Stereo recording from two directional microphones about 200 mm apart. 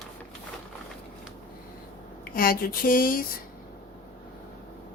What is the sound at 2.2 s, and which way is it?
Speech, 45° left (ahead or behind).